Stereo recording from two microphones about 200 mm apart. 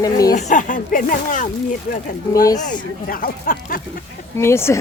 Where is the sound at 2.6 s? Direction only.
45° left (ahead or behind).